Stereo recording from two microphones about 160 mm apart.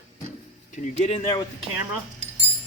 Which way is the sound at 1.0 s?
40° left (ahead or behind).